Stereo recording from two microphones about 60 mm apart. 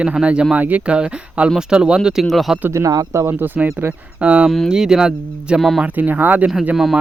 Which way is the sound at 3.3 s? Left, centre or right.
Right.